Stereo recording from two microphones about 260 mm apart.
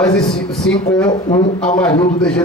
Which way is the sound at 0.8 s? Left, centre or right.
Centre.